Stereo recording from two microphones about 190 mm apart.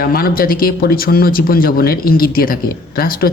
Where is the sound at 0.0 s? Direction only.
50° left (ahead or behind).